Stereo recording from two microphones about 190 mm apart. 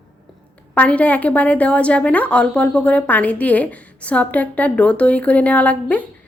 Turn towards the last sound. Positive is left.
turn(degrees=10)  # may be behind; listen again after turning